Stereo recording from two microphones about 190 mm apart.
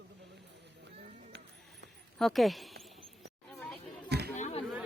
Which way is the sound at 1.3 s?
60° right (ahead or behind).